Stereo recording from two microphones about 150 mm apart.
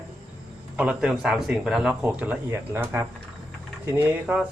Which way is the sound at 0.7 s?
10° right (ahead or behind).